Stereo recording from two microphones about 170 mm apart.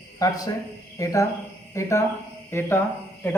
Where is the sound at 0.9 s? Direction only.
20° left (ahead or behind).